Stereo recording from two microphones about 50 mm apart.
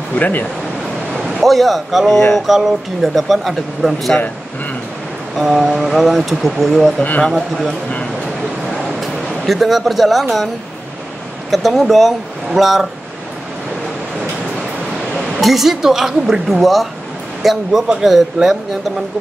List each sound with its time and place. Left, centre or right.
0.1 s speech: left
1.1 s speech: centre
5.4 s speech: centre
7.0 s speech: left
7.3 s speech: centre
9.5 s speech: centre
11.5 s speech: centre
15.4 s a woman's voice: centre